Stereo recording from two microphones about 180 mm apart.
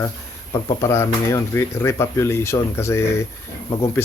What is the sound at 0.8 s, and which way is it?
Speech, 15° left (ahead or behind).